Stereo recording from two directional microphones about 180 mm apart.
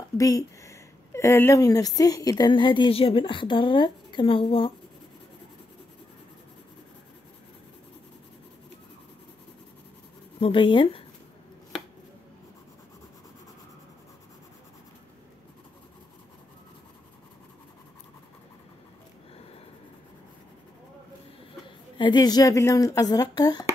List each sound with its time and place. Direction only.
0.2 s a woman's voice: 20° left (ahead or behind)
10.4 s a woman's voice: 30° left (ahead or behind)
21.6 s a woman's voice: 25° left (ahead or behind)